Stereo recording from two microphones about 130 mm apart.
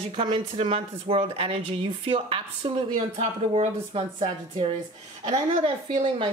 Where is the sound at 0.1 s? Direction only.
40° right (ahead or behind).